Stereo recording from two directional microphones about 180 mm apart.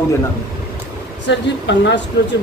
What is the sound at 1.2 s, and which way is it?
Speech, 80° left.